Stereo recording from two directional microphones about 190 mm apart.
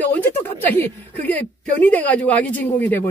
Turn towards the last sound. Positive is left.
turn(degrees=10)  # may be behind; listen again after turning